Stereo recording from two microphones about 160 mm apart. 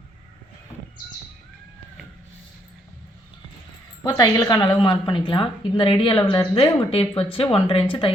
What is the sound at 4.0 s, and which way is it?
A woman's voice, 25° left (ahead or behind).